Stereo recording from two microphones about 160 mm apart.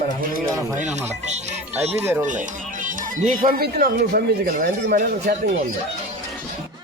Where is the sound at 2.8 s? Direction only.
55° right (ahead or behind); by 5.3 s 75° right (ahead or behind).